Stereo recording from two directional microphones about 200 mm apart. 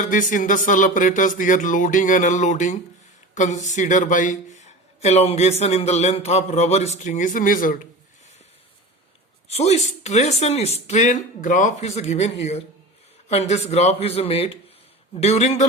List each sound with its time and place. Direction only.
0.0 s speech: 40° left (ahead or behind)
9.5 s speech: 35° left (ahead or behind)